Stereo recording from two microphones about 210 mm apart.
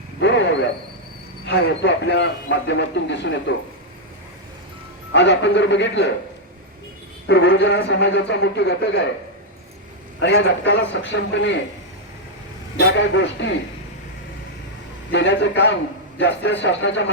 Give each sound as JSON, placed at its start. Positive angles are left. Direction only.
{"t": 0.2, "sound": "a sound", "side_deg": 60}
{"t": 1.5, "sound": "a man's voice", "side_deg": 55}
{"t": 5.1, "sound": "a man's voice", "side_deg": 55}
{"t": 7.3, "sound": "a man's voice", "side_deg": 55}
{"t": 10.2, "sound": "a man's voice", "side_deg": 60}
{"t": 12.7, "sound": "a man's voice", "side_deg": 60}
{"t": 15.1, "sound": "a man's voice", "side_deg": 60}